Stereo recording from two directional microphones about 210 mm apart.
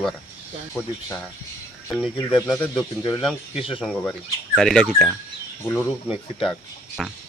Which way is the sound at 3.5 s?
25° left (ahead or behind).